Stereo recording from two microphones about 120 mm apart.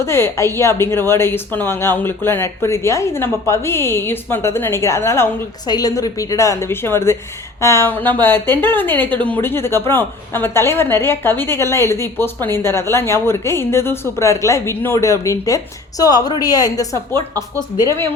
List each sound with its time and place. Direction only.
0.0 s a woman's voice: 20° left (ahead or behind)
5.6 s a woman's voice: 30° left (ahead or behind)
17.1 s a woman's voice: 20° left (ahead or behind)